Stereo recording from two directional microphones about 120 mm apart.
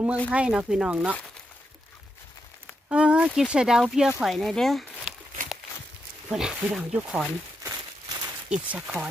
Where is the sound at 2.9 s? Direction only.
10° right (ahead or behind).